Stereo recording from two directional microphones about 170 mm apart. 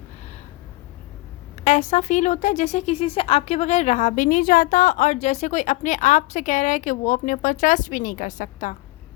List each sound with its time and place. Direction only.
1.6 s speech: 45° left (ahead or behind)